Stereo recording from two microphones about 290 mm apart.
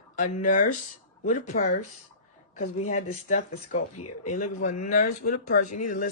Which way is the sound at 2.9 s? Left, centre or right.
Left.